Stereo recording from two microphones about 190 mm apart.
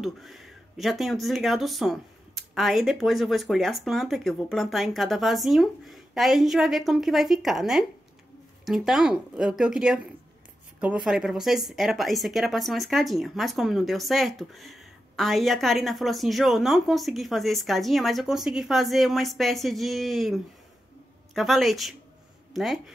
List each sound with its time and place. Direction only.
0.0 s speech: centre (ahead or behind)